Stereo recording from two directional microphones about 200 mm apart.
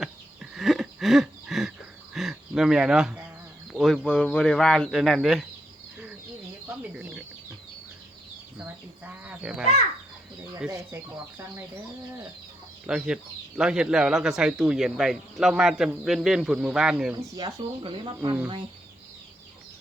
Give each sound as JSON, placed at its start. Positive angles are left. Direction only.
{"t": 0.5, "sound": "a sound", "side_deg": 0}
{"t": 2.1, "sound": "speech", "side_deg": 0}
{"t": 6.7, "sound": "bird", "side_deg": -5}
{"t": 8.5, "sound": "a sound", "side_deg": -10}
{"t": 10.7, "sound": "speech", "side_deg": -15}
{"t": 12.9, "sound": "speech", "side_deg": -5}
{"t": 17.2, "sound": "speech", "side_deg": -20}